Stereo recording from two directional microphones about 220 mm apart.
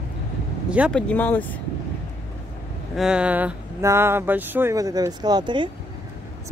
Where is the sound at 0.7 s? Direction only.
5° right (ahead or behind).